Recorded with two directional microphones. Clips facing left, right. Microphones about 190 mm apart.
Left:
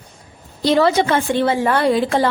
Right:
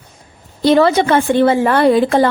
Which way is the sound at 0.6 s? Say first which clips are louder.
Right 4 dB; 55° right (ahead or behind).